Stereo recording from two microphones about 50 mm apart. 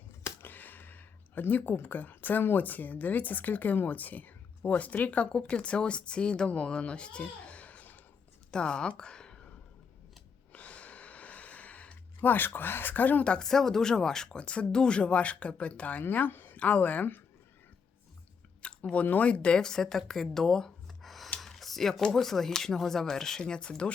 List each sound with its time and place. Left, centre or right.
0.4 s speech: left
8.4 s speech: centre
10.5 s a sound: left
13.2 s speech: centre
13.5 s speech: centre; by 16.6 s left
16.6 s speech: left
18.6 s chewing: left
19.2 s speech: left